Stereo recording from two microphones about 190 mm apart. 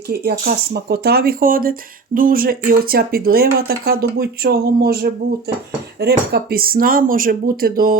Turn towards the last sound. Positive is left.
turn(degrees=-50)  # may be behind; listen again after turning